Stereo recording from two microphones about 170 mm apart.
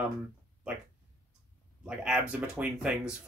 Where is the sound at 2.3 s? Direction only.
5° right (ahead or behind).